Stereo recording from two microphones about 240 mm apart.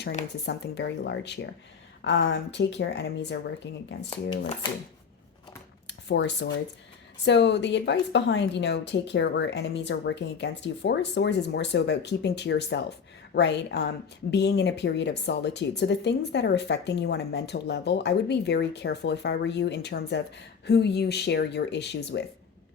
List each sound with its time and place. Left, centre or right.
0.4 s speech: left
4.1 s speech: left
5.9 s speech: left